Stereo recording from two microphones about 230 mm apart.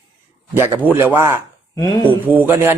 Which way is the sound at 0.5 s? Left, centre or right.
Centre.